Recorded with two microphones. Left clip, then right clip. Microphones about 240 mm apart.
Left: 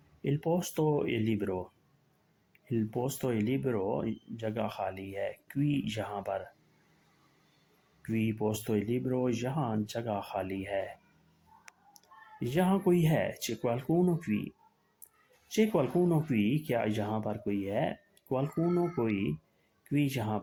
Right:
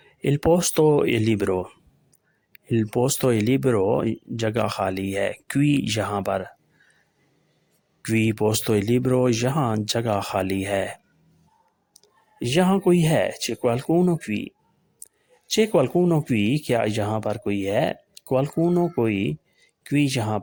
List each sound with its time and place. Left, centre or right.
0.2 s speech: right
8.0 s speech: right
11.9 s speech: right
15.5 s speech: right